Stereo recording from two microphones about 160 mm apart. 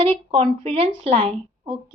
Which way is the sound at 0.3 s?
35° right (ahead or behind).